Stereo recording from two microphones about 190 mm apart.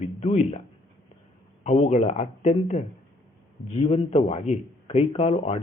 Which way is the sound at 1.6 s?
35° left (ahead or behind).